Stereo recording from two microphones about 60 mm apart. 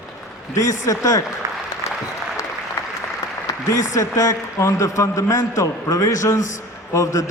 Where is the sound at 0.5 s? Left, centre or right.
Left.